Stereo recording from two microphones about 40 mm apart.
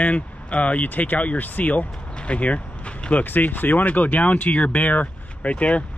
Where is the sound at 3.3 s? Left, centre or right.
Left.